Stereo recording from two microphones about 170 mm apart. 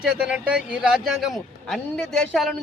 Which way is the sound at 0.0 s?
5° right (ahead or behind).